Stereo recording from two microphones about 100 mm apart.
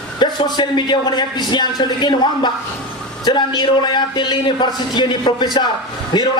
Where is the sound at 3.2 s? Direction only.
50° left (ahead or behind).